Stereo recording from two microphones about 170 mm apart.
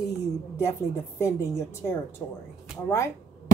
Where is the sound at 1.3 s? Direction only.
15° left (ahead or behind).